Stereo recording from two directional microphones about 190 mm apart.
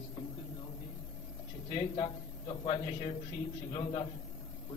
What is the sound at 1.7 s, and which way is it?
A man's voice, 25° left (ahead or behind).